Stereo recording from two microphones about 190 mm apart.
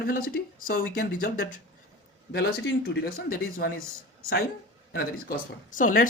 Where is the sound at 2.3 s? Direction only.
55° left (ahead or behind).